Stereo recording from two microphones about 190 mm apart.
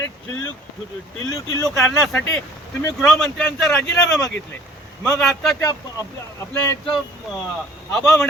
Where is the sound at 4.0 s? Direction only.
15° left (ahead or behind).